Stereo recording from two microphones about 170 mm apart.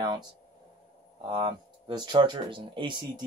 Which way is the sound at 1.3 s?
30° right (ahead or behind).